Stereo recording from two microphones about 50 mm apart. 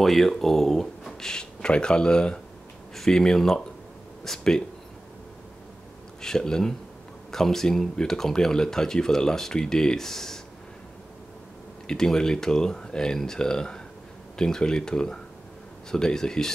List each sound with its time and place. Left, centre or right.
0.0 s speech: centre
1.3 s speech: centre
6.2 s speech: centre
11.9 s speech: centre